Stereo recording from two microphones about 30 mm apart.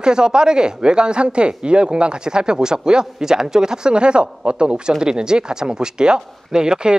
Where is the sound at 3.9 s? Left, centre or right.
Right.